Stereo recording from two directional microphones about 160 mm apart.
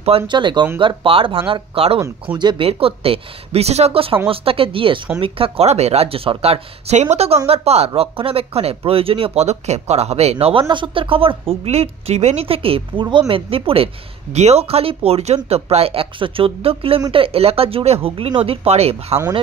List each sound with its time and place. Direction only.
0.3 s speech: 30° right (ahead or behind)
2.0 s speech: 20° right (ahead or behind); by 19.1 s 40° right (ahead or behind)